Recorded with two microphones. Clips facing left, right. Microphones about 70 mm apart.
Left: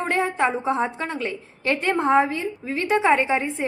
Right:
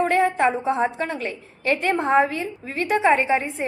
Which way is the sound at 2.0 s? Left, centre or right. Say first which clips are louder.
Left 1 dB; right.